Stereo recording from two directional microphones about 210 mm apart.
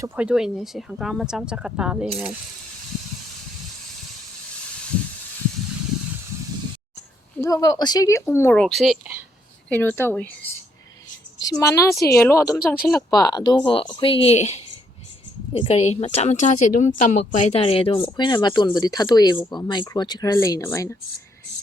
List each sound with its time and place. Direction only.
0.0 s speech: 5° right (ahead or behind)
7.4 s speech: 15° left (ahead or behind); by 9.2 s 5° right (ahead or behind)
9.6 s speech: 10° left (ahead or behind)
11.3 s a woman's voice: 15° left (ahead or behind)